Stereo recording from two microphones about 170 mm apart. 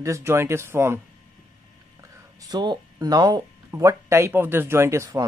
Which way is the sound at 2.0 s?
20° right (ahead or behind).